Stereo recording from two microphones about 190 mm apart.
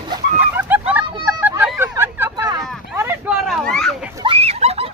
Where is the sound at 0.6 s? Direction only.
10° right (ahead or behind).